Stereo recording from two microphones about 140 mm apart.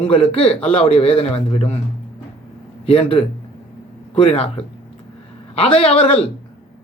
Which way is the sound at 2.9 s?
40° left (ahead or behind).